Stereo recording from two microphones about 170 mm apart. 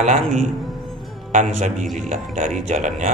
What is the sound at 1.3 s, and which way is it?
A man's voice, 45° right (ahead or behind).